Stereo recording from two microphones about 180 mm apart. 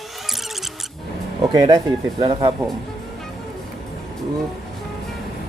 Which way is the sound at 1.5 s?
20° right (ahead or behind).